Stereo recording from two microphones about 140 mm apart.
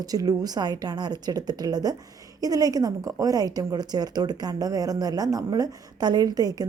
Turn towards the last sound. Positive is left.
turn(degrees=-25)  # may be behind; listen again after turning